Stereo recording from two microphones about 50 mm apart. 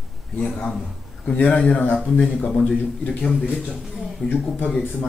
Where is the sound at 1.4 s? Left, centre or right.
Left.